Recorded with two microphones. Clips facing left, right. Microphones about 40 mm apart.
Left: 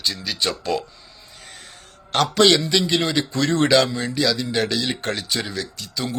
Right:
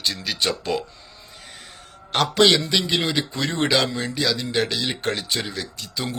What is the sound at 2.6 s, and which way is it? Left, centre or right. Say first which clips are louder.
Speech: left 2 dB; centre.